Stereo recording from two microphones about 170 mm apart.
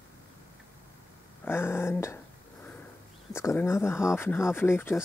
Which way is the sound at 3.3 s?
15° left (ahead or behind).